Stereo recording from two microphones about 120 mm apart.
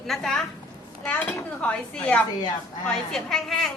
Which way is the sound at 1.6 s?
10° left (ahead or behind).